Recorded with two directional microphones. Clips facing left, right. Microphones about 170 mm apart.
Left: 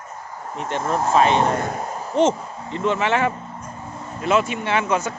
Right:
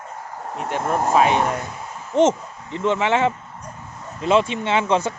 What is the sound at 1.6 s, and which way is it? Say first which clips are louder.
Speech: left 6 dB; 60° left (ahead or behind).